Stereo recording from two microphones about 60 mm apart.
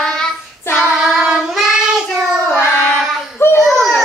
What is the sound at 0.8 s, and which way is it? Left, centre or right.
Child singing, centre.